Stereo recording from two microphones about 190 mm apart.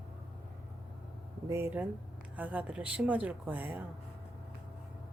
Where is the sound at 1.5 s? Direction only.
10° right (ahead or behind).